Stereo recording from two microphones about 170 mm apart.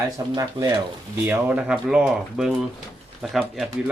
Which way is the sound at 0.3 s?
20° right (ahead or behind).